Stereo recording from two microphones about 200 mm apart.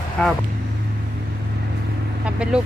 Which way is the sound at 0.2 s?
5° left (ahead or behind).